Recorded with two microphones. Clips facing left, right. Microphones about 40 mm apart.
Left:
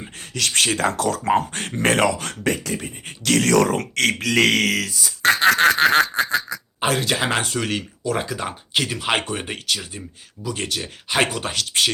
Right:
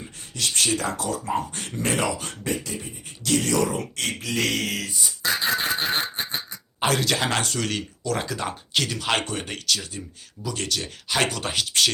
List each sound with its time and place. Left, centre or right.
0.2 s a sound: left
0.5 s speech: left
4.4 s speech: left
4.6 s speech: left
5.3 s a sound: left
6.7 s speech: centre